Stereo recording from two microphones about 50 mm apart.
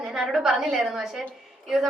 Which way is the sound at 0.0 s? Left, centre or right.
Centre.